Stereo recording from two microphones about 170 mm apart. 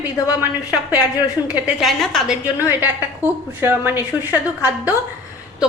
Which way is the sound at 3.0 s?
10° right (ahead or behind).